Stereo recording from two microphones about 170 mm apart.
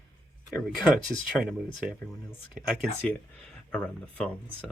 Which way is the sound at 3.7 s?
5° left (ahead or behind).